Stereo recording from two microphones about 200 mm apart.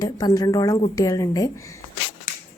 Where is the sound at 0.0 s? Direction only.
20° left (ahead or behind).